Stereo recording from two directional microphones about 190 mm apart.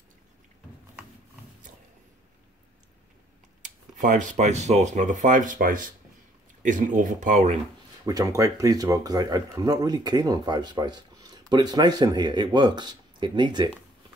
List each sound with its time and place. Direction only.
3.6 s speech: 45° right (ahead or behind)
8.0 s speech: 20° right (ahead or behind)